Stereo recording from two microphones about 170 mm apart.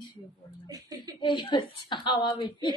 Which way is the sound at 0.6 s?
25° right (ahead or behind).